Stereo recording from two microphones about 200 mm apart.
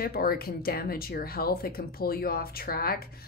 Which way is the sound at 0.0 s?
50° left (ahead or behind).